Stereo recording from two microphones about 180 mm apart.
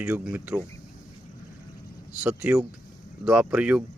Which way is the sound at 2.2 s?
10° right (ahead or behind).